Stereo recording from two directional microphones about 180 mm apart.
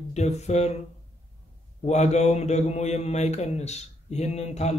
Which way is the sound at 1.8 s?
40° left (ahead or behind).